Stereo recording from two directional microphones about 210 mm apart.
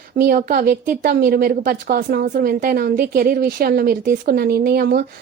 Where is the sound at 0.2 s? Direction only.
45° right (ahead or behind).